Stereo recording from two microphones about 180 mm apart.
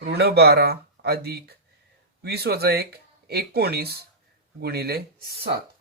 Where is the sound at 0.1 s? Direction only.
65° right (ahead or behind).